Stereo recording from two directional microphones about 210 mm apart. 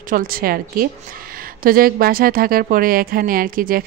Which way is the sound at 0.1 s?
45° right (ahead or behind).